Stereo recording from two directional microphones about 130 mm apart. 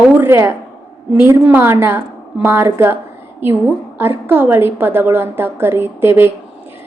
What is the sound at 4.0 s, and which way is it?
A woman's voice, 15° right (ahead or behind).